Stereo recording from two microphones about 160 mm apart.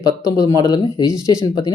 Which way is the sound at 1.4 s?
25° left (ahead or behind).